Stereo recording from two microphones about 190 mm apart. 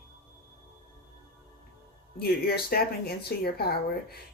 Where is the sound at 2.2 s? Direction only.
55° left (ahead or behind).